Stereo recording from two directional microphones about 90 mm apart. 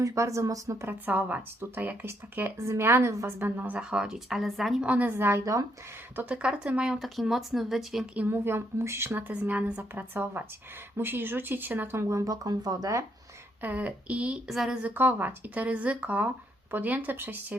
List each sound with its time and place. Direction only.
0.0 s speech: 35° right (ahead or behind)
0.9 s speech: 20° right (ahead or behind)
3.8 s speech: 10° right (ahead or behind)
4.9 s speech: 20° right (ahead or behind)
6.1 s speech: 15° right (ahead or behind)
8.1 s speech: 20° right (ahead or behind); by 13.1 s 40° right (ahead or behind)
13.6 s speech: 15° right (ahead or behind)
14.5 s speech: 5° right (ahead or behind)
14.8 s speech: 20° right (ahead or behind)